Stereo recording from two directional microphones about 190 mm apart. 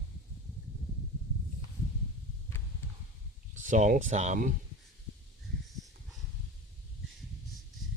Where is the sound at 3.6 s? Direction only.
40° right (ahead or behind).